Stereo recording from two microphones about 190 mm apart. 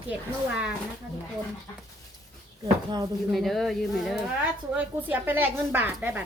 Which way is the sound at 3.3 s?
Centre (ahead or behind).